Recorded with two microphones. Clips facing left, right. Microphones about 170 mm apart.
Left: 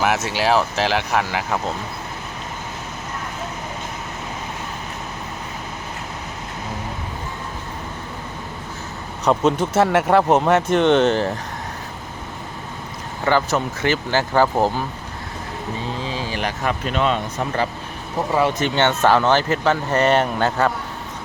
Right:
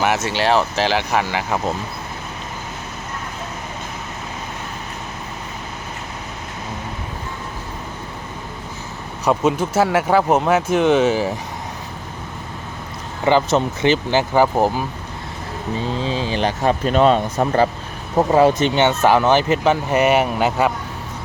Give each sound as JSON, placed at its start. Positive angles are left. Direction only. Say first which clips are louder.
{"t": 0.0, "sound": "speech", "louder": "right 1 dB", "side_deg": 0}
{"t": 9.2, "sound": "speech", "louder": "even", "side_deg": -5}
{"t": 13.2, "sound": "speech", "louder": "right 3 dB", "side_deg": -20}
{"t": 16.0, "sound": "speech", "louder": "right 5 dB", "side_deg": -30}
{"t": 18.6, "sound": "speech", "louder": "right 2 dB", "side_deg": -15}